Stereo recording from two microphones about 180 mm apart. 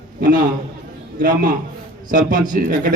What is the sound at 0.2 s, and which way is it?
A man's voice, 50° right (ahead or behind).